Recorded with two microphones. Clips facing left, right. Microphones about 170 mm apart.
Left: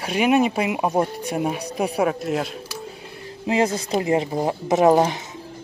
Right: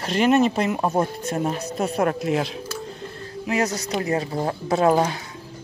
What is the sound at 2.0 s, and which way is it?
Speech, centre (ahead or behind).